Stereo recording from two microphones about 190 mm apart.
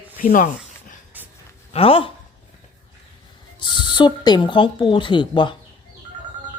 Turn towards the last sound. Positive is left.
turn(degrees=25)  # may be behind; listen again after turning